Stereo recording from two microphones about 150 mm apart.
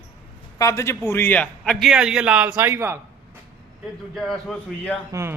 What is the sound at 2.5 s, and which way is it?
Speech, 20° right (ahead or behind).